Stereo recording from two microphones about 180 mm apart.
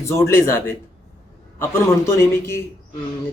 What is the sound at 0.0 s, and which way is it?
A man's voice, 15° left (ahead or behind).